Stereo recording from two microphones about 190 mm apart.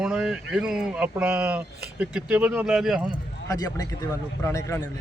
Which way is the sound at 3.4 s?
20° left (ahead or behind).